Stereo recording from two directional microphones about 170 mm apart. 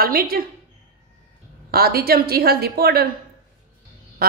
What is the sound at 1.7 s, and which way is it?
A woman's voice, 65° right (ahead or behind).